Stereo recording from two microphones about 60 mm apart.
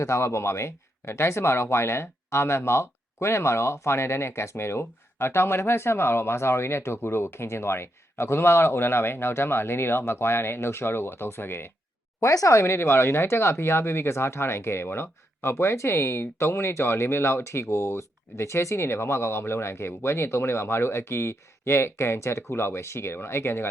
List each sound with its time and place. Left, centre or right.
0.0 s speech: left
12.2 s speech: left
12.5 s speech: left